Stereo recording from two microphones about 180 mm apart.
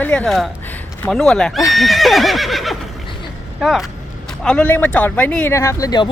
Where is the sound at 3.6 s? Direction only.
Centre (ahead or behind); by 6.1 s 20° left (ahead or behind).